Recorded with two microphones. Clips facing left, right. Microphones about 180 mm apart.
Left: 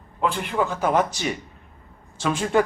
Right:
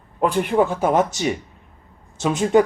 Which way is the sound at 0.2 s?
50° right (ahead or behind).